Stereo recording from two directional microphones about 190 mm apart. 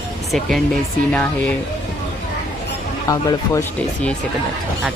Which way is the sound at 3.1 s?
15° left (ahead or behind).